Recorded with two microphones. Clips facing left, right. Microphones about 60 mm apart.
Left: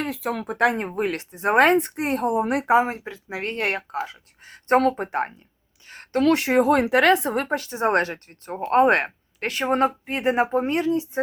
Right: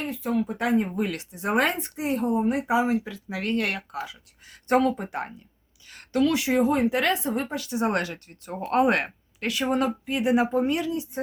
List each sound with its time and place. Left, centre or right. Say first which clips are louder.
0.0 s speech: even; left
0.9 s speech: left 3 dB; left
2.7 s speech: left 3 dB; left
4.0 s a sound: left 4 dB; left
4.8 s speech: left 3 dB; left
5.9 s a sound: left 1 dB; left
6.2 s speech: left 5 dB; left